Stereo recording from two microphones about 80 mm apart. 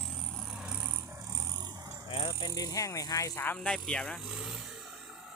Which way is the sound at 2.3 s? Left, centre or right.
Left.